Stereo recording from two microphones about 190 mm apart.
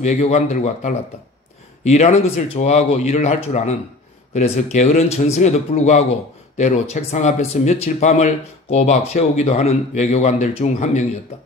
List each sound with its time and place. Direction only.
0.0 s speech: 35° left (ahead or behind)